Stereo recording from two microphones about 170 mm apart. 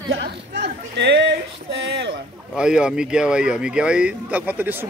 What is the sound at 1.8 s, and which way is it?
Boat, 90° right.